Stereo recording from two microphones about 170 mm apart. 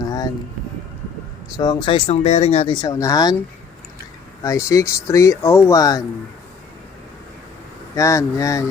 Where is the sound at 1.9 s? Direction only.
40° left (ahead or behind).